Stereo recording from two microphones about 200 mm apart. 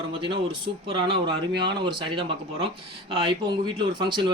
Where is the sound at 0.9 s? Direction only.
25° right (ahead or behind).